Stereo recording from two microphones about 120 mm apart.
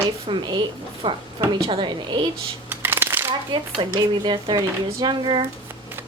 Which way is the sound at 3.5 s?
40° right (ahead or behind).